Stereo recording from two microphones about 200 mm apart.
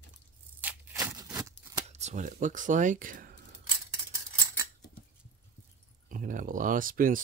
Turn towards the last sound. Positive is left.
turn(degrees=-45)  # may be behind; listen again after turning